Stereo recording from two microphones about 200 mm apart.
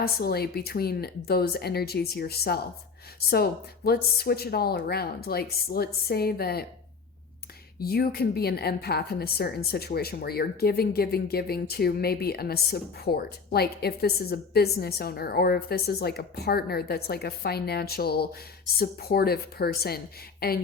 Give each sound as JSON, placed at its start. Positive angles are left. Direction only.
{"t": 0.0, "sound": "a woman's voice", "side_deg": 50}
{"t": 7.8, "sound": "a woman's voice", "side_deg": 50}